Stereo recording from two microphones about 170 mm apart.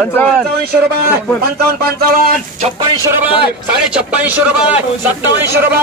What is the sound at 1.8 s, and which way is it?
Speech, 60° right (ahead or behind).